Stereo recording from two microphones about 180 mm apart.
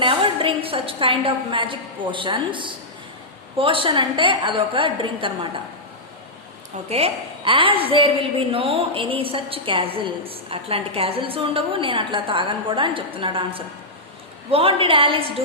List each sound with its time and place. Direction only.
0.0 s a woman's voice: 30° right (ahead or behind)
6.8 s a woman's voice: 35° right (ahead or behind)